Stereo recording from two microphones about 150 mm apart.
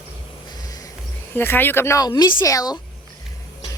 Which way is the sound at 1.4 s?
15° left (ahead or behind).